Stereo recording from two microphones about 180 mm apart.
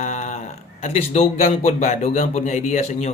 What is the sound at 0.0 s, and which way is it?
A man's voice, 40° left (ahead or behind).